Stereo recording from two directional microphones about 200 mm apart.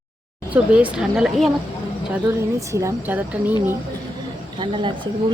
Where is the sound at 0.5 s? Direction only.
5° right (ahead or behind).